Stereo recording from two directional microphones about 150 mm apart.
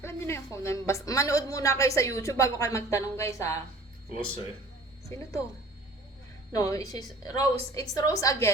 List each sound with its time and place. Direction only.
0.0 s speech: 20° left (ahead or behind)
5.0 s speech: 20° left (ahead or behind)
6.5 s speech: 20° left (ahead or behind)